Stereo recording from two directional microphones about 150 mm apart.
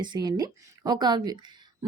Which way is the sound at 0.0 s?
30° right (ahead or behind).